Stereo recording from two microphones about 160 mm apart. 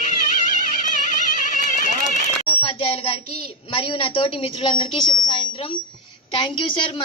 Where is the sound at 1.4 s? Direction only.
55° left (ahead or behind).